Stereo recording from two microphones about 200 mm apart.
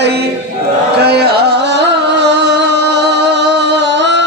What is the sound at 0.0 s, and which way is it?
Chant, 55° right (ahead or behind).